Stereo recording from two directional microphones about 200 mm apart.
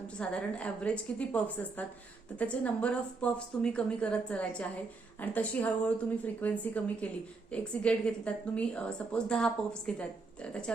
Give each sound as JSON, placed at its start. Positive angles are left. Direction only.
{"t": 0.2, "sound": "a woman's voice", "side_deg": 5}